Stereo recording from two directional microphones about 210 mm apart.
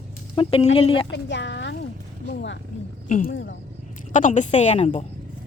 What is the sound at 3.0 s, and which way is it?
Speech, 40° left (ahead or behind).